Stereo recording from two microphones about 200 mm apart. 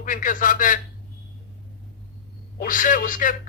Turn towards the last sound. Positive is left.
turn(degrees=40)  # may be behind; listen again after turning